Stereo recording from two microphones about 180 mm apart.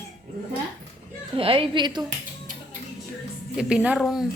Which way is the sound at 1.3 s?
30° right (ahead or behind).